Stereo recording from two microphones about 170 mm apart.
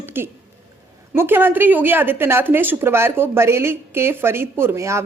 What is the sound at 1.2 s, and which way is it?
A woman's voice, 10° right (ahead or behind).